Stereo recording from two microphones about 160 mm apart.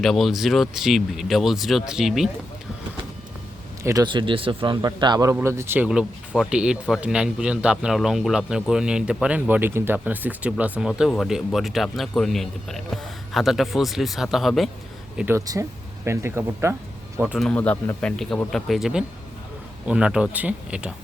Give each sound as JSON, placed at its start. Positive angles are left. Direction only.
{"t": 0.0, "sound": "speech", "side_deg": 0}
{"t": 3.8, "sound": "a man's voice", "side_deg": -25}
{"t": 15.2, "sound": "a man's voice", "side_deg": -15}
{"t": 17.4, "sound": "speech", "side_deg": 10}